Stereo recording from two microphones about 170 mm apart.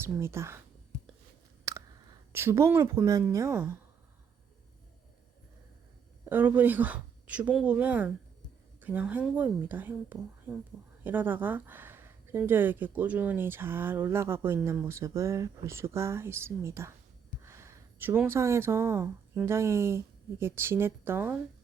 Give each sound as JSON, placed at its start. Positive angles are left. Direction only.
{"t": 0.0, "sound": "speech", "side_deg": -15}
{"t": 1.7, "sound": "a sound", "side_deg": -20}
{"t": 2.3, "sound": "speech", "side_deg": -15}
{"t": 6.2, "sound": "speech", "side_deg": -10}